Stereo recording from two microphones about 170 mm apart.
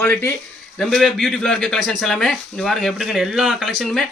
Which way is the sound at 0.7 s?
Centre (ahead or behind).